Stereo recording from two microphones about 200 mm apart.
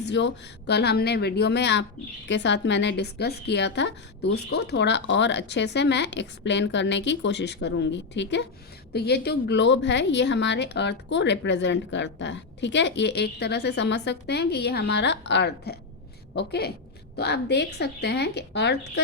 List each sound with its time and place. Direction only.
0.0 s a woman's voice: 60° left (ahead or behind)